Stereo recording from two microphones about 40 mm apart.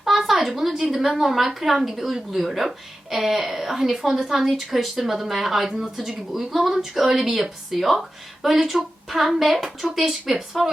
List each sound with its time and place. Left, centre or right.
0.0 s speech: centre